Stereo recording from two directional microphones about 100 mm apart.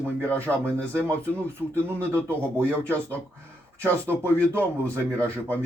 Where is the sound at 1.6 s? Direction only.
20° right (ahead or behind).